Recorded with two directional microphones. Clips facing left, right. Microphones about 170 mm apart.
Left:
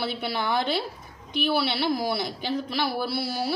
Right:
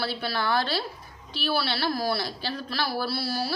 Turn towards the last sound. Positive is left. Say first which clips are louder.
# left 1 dB
turn(degrees=20)  # may be behind; listen again after turning